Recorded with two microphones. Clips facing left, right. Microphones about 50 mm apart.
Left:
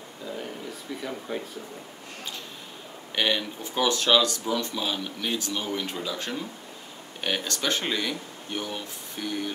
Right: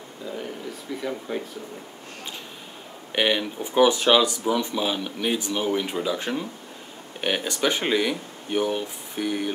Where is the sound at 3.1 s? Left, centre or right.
Centre.